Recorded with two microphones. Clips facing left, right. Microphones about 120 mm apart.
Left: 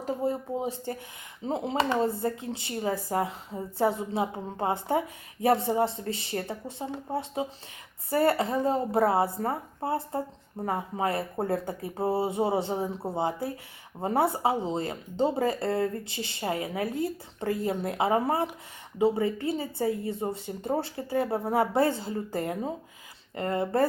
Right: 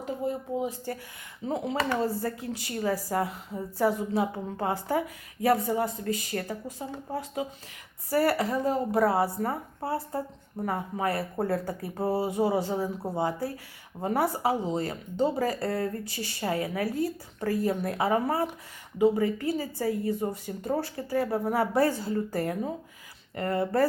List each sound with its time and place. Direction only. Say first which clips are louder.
0.0 s speech: left 2 dB; 35° left (ahead or behind)